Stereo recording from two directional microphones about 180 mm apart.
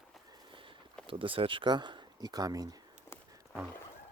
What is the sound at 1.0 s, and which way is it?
Speech, 30° right (ahead or behind).